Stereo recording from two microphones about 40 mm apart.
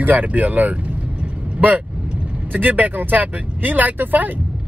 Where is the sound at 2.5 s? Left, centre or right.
Right.